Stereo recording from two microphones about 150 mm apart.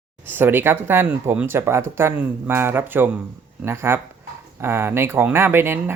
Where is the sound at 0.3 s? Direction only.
15° right (ahead or behind).